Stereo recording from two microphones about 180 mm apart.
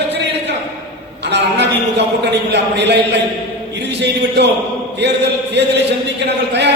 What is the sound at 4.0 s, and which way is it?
A man's voice, 70° right (ahead or behind).